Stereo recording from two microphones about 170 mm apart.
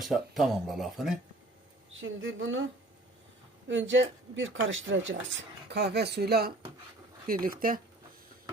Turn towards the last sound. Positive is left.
turn(degrees=-55)  # may be behind; listen again after turning